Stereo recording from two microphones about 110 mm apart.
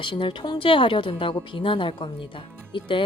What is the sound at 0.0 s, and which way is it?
A woman's voice, 50° left (ahead or behind).